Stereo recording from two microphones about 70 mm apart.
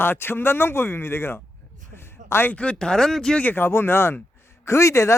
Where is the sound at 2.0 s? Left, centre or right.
Left.